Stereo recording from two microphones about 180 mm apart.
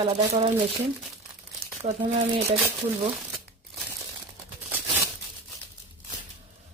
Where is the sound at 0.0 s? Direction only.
30° right (ahead or behind).